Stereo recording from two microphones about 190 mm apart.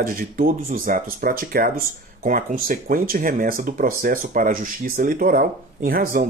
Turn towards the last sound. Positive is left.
turn(degrees=-50)  # may be behind; listen again after turning